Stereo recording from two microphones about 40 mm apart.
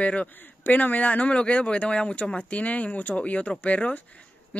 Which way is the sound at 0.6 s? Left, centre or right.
Left.